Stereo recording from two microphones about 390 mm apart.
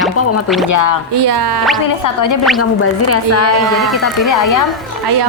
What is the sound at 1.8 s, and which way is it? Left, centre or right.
Speech, left.